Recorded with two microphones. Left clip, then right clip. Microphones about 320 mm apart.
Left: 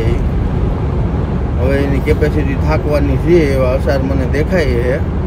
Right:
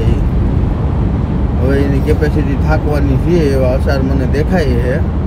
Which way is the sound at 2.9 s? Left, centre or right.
Left.